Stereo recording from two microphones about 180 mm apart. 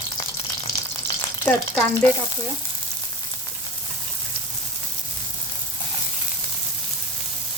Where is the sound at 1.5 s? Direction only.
10° left (ahead or behind).